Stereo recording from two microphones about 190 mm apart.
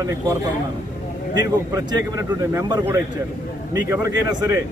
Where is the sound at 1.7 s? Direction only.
15° right (ahead or behind).